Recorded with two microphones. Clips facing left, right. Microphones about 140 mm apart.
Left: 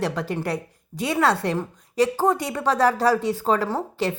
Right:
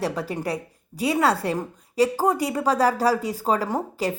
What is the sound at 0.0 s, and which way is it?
A woman's voice, 5° right (ahead or behind).